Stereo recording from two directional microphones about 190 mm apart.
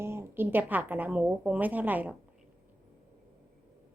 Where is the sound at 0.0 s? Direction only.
15° right (ahead or behind).